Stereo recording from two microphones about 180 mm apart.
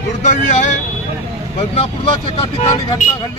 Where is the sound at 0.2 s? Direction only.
40° left (ahead or behind).